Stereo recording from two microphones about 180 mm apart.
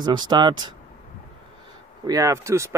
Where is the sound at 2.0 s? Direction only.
20° right (ahead or behind).